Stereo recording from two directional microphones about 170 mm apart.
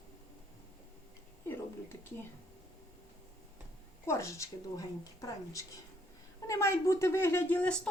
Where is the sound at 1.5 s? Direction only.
15° left (ahead or behind).